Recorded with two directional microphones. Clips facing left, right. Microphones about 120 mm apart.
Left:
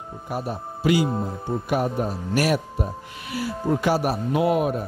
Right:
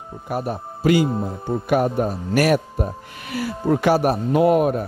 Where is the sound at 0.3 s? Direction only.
55° right (ahead or behind).